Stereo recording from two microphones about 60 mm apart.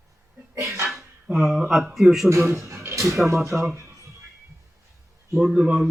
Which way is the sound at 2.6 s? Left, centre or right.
Right.